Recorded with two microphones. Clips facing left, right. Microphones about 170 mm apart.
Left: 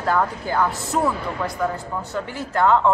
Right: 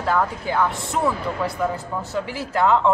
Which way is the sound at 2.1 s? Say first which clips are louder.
Right 1 dB; 5° right (ahead or behind).